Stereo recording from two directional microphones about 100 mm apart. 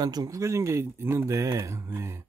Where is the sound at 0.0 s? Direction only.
40° right (ahead or behind).